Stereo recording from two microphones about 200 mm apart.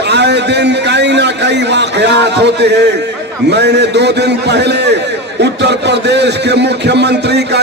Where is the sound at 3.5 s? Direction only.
55° right (ahead or behind).